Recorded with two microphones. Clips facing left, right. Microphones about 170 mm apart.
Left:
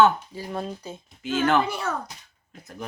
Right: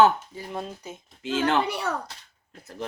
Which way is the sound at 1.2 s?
30° right (ahead or behind).